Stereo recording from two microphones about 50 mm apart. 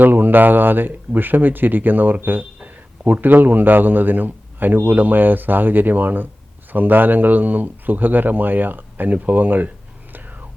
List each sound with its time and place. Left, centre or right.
0.0 s a man's voice: right
10.1 s whispering: right